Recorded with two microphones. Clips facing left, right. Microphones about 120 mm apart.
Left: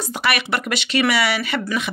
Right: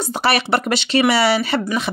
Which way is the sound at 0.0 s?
30° right (ahead or behind).